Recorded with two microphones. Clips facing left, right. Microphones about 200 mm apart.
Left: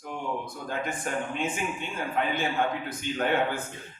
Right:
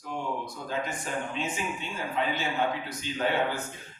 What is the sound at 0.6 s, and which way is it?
A man's voice, 55° left (ahead or behind).